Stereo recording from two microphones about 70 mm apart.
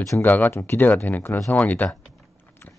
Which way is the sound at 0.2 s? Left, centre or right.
Left.